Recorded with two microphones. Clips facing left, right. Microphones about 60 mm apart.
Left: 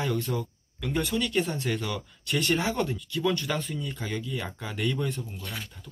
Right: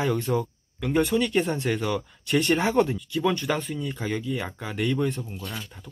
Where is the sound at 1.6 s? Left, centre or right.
Centre.